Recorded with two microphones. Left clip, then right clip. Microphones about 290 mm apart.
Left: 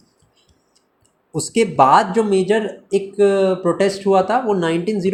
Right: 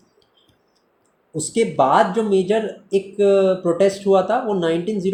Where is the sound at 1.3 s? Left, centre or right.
Left.